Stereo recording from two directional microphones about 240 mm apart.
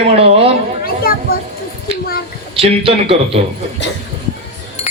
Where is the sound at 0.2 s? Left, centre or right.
Right.